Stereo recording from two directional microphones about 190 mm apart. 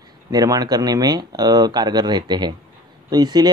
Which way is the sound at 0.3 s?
20° right (ahead or behind).